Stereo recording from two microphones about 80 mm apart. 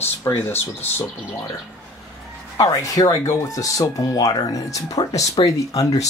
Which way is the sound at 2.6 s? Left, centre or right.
Left.